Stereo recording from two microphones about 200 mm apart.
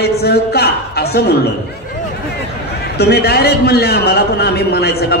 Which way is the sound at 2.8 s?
55° left (ahead or behind).